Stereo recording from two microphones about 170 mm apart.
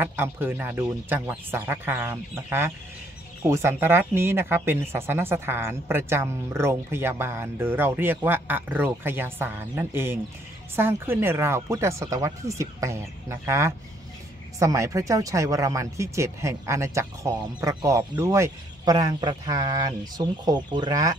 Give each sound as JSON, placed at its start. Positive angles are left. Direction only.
{"t": 0.0, "sound": "speech", "side_deg": -15}